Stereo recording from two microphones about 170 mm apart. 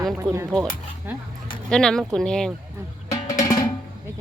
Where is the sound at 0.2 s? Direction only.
15° right (ahead or behind).